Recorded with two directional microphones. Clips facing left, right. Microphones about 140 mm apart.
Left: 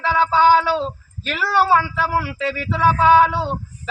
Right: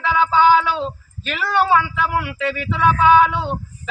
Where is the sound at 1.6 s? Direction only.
40° left (ahead or behind).